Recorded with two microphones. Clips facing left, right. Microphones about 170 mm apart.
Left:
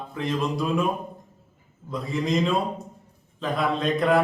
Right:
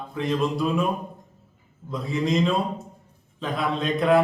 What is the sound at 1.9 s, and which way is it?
Speech, centre (ahead or behind).